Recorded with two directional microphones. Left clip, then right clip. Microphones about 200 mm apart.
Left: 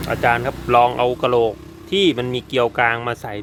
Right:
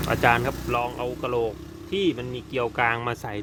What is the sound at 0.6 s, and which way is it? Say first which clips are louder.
Speech: left 12 dB; 25° left (ahead or behind).